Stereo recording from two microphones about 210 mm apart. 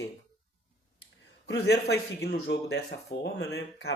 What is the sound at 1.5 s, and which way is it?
Speech, 55° left (ahead or behind).